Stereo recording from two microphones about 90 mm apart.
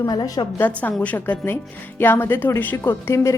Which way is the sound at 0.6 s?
20° left (ahead or behind).